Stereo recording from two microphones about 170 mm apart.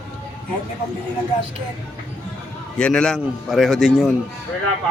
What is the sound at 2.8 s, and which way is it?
Speech, 5° left (ahead or behind).